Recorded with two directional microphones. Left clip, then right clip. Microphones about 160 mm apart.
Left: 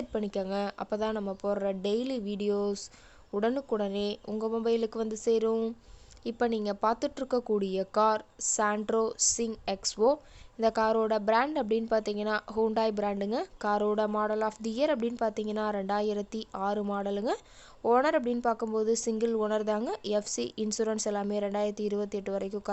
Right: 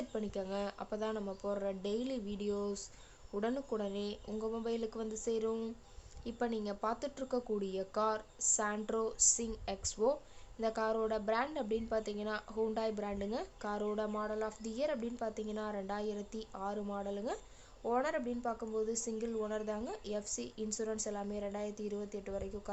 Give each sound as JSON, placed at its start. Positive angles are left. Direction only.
{"t": 0.1, "sound": "a woman's voice", "side_deg": 45}